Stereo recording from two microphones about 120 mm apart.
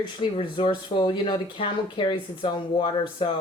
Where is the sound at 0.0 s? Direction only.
45° left (ahead or behind).